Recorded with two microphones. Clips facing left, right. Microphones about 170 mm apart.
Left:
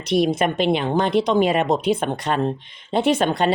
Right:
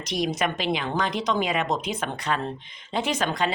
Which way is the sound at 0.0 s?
60° left (ahead or behind).